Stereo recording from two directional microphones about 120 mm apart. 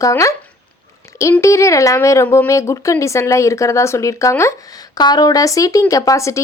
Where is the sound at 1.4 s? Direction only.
25° left (ahead or behind).